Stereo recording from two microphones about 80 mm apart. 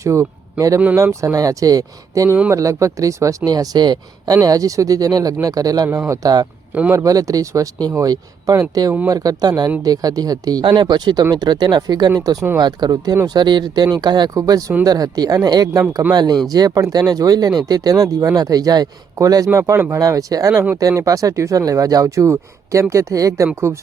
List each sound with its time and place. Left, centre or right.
0.0 s speech: right
5.9 s speech: right
6.2 s speech: right
10.6 s speech: right
16.1 s speech: right
19.5 s speech: right